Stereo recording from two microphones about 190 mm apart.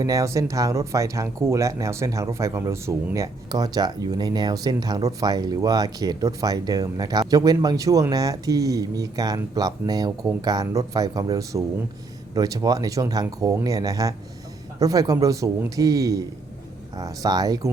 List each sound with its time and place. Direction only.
0.0 s speech: 15° right (ahead or behind)